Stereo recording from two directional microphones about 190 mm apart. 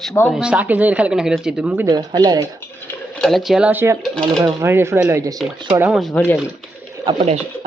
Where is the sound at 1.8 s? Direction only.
20° right (ahead or behind).